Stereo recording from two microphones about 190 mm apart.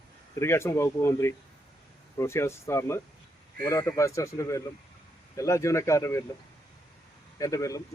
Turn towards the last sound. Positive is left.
turn(degrees=15)  # may be behind; listen again after turning